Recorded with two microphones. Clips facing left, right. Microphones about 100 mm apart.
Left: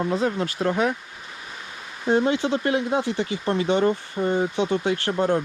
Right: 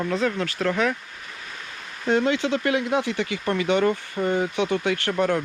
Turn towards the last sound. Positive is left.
turn(degrees=20)  # may be behind; listen again after turning